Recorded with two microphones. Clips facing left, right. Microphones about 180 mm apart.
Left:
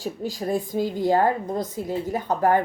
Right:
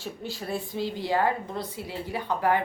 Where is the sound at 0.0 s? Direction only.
40° left (ahead or behind).